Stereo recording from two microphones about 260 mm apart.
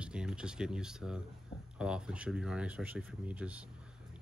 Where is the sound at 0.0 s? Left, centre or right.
Centre.